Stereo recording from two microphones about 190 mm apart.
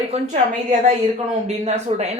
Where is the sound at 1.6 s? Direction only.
35° right (ahead or behind).